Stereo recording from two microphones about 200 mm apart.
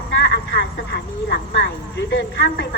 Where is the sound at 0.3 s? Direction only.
65° left (ahead or behind).